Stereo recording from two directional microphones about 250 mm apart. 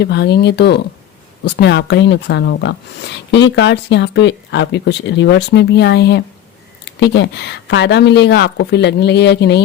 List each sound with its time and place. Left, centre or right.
0.0 s speech: left